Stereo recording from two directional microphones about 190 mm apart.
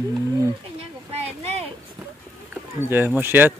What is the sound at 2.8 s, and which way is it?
Speech, 10° right (ahead or behind).